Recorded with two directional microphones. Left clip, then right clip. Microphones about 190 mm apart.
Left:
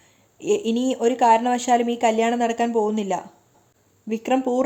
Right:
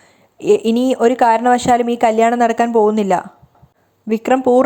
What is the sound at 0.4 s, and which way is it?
Speech, 25° right (ahead or behind).